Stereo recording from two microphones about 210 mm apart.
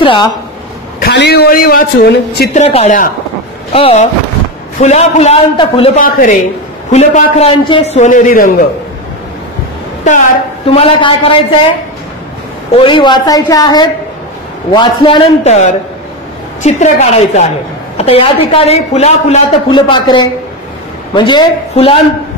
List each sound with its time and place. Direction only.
0.0 s a man's voice: 20° left (ahead or behind)
0.9 s a woman's voice: 50° left (ahead or behind)
2.5 s a man's voice: 30° left (ahead or behind)
5.9 s a man's voice: 40° left (ahead or behind)
10.0 s a man's voice: 35° left (ahead or behind)
12.7 s a man's voice: 25° left (ahead or behind)